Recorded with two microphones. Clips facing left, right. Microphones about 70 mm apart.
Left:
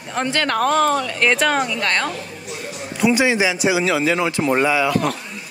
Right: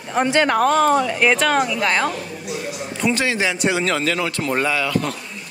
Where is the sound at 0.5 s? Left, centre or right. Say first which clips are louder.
Left 1 dB; centre.